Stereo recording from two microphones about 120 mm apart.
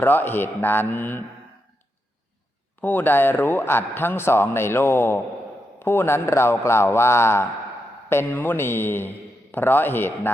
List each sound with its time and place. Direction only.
0.0 s a man's voice: 15° left (ahead or behind)
2.8 s a man's voice: 15° left (ahead or behind)